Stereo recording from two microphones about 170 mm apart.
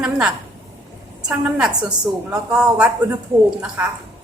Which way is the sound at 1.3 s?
5° right (ahead or behind).